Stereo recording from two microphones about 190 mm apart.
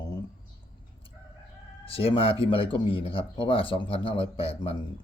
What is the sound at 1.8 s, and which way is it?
Speech, 30° left (ahead or behind).